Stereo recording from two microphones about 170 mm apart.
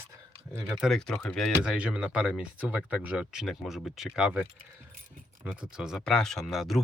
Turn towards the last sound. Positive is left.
turn(degrees=0)  # may be behind; listen again after turning